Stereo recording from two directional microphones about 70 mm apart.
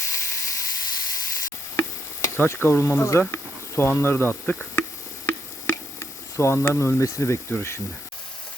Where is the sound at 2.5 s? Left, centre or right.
Left.